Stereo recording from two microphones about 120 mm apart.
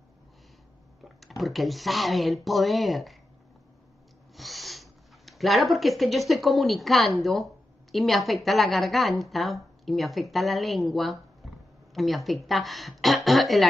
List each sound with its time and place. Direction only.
1.0 s a woman's voice: centre (ahead or behind)
4.4 s a woman's voice: centre (ahead or behind)
11.4 s a sound: centre (ahead or behind)
11.9 s a woman's voice: centre (ahead or behind)